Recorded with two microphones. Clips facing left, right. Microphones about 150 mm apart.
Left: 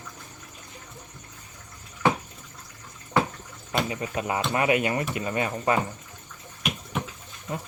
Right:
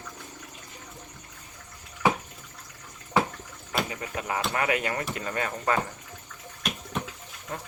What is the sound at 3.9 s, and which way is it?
Speech, 20° left (ahead or behind).